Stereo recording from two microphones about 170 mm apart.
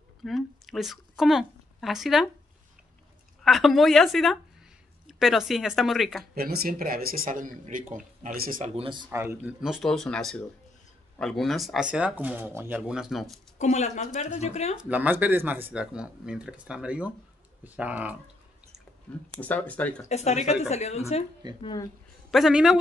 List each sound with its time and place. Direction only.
0.2 s speech: centre (ahead or behind)
3.4 s speech: centre (ahead or behind)
6.3 s speech: 65° right (ahead or behind)
8.7 s speech: 30° right (ahead or behind)
9.1 s speech: 15° right (ahead or behind)
9.8 s speech: 5° left (ahead or behind)
13.6 s speech: 45° left (ahead or behind)
14.8 s speech: 10° right (ahead or behind)
19.4 s speech: 10° left (ahead or behind)
20.1 s a woman's voice: 40° left (ahead or behind)
21.5 s speech: 25° left (ahead or behind)
22.3 s speech: 5° right (ahead or behind)